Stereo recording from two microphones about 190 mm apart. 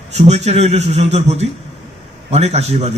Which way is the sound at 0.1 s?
35° right (ahead or behind).